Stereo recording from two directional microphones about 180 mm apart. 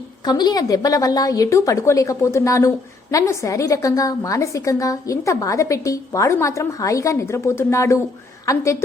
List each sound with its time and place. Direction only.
0.3 s a woman's voice: 20° left (ahead or behind)